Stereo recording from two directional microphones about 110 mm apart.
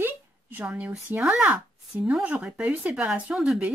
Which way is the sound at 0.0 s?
15° right (ahead or behind).